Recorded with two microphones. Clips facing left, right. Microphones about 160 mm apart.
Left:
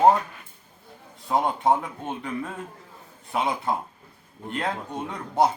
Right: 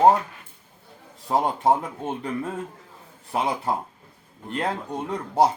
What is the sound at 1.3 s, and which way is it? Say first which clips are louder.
Speech: right 1 dB; 35° right (ahead or behind).